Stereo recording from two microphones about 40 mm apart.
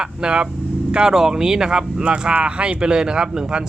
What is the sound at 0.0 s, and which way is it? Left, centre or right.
Speech, right.